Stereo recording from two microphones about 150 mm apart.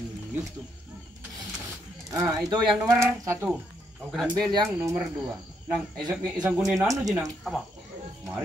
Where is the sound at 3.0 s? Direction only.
20° right (ahead or behind).